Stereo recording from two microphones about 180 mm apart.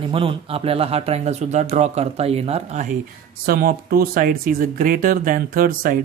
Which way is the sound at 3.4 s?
55° right (ahead or behind).